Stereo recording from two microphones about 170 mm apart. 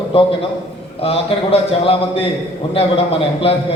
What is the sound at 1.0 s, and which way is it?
Speech, 35° left (ahead or behind).